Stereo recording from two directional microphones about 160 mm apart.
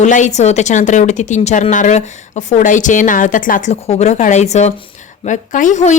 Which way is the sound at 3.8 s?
45° left (ahead or behind).